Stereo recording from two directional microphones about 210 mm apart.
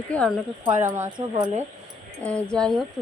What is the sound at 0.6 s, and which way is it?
Speech, 15° right (ahead or behind).